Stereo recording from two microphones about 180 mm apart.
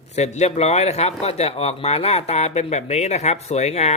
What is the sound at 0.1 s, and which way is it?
Speech, 40° left (ahead or behind).